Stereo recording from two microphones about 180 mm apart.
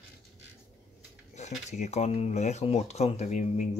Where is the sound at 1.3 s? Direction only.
40° left (ahead or behind).